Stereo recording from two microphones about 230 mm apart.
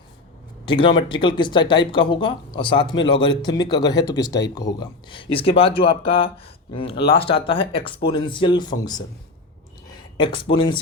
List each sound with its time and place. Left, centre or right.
0.6 s speech: left
10.2 s speech: left